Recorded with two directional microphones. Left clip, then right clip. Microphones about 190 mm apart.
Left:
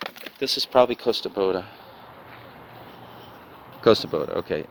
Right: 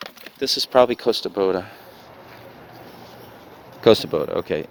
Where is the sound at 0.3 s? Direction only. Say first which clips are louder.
Right 3 dB; 35° right (ahead or behind).